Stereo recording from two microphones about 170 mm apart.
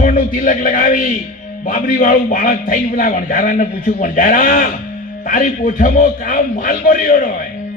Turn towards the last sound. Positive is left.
turn(degrees=50)  # may be behind; listen again after turning